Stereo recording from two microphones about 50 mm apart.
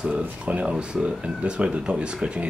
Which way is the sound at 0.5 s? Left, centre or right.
Right.